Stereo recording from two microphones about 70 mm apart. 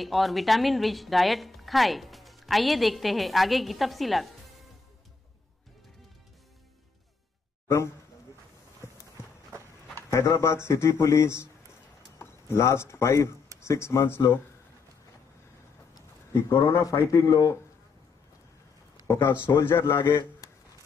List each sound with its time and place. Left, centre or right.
0.0 s a woman's voice: centre
7.6 s speech: left
10.0 s speech: left
16.3 s speech: left
17.1 s speech: left
19.6 s speech: left